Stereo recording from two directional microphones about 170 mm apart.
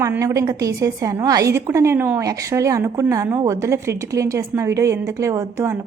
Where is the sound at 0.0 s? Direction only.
15° right (ahead or behind).